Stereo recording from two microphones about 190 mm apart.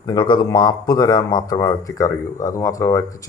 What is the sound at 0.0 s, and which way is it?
Speech, 20° left (ahead or behind).